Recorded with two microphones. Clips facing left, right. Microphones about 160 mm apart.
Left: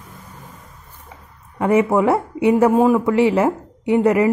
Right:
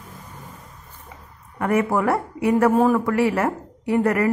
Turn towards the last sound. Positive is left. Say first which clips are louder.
# left 4 dB
turn(degrees=20)  # may be behind; listen again after turning